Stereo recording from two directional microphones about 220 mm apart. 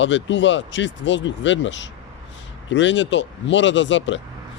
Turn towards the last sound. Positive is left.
turn(degrees=55)  # may be behind; listen again after turning